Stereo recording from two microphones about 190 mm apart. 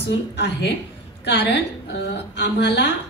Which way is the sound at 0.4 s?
65° left (ahead or behind).